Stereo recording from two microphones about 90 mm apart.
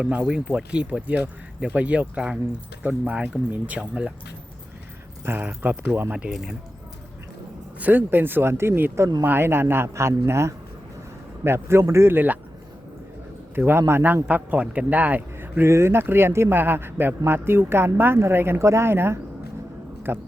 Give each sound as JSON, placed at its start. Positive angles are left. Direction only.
{"t": 0.0, "sound": "speech", "side_deg": -15}
{"t": 5.2, "sound": "speech", "side_deg": -25}
{"t": 7.8, "sound": "speech", "side_deg": -20}
{"t": 13.6, "sound": "speech", "side_deg": -25}